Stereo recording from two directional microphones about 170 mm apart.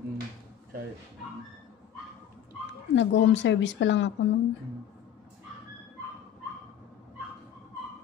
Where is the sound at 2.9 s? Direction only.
90° left.